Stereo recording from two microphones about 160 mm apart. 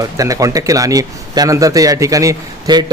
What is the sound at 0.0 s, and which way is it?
A man's voice, 20° right (ahead or behind).